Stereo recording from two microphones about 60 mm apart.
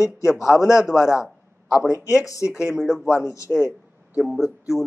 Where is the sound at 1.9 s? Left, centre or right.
Left.